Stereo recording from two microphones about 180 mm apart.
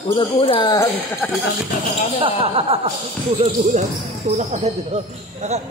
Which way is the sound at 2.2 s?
30° right (ahead or behind).